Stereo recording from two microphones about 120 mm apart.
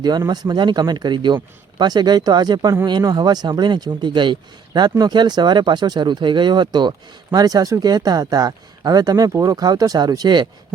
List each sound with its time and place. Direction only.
0.3 s speech: 35° right (ahead or behind)